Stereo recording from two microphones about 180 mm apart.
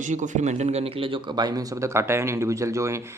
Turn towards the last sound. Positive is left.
turn(degrees=-15)  # may be behind; listen again after turning